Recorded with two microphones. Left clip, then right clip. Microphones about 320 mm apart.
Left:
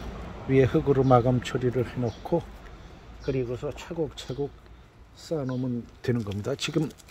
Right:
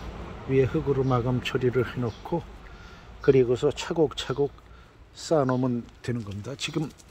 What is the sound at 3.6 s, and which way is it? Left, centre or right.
Speech, centre.